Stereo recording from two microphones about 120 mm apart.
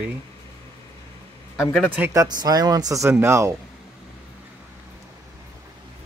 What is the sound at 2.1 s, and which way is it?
Speech, 30° right (ahead or behind).